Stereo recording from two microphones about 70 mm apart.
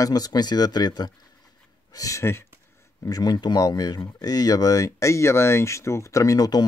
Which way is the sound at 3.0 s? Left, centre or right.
Left.